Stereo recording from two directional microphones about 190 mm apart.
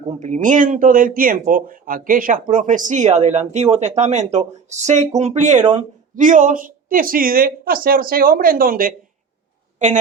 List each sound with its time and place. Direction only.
0.2 s a woman's voice: 40° right (ahead or behind)